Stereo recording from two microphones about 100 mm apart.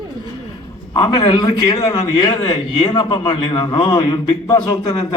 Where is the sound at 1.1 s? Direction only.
45° left (ahead or behind).